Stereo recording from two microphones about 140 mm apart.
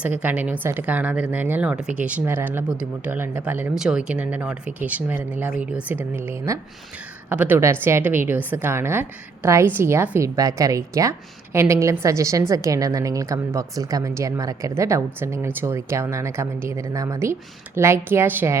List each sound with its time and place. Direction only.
0.0 s a woman's voice: 10° right (ahead or behind)